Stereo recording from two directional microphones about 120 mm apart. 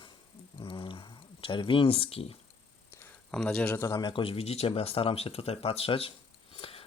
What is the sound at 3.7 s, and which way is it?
Speech, 30° left (ahead or behind).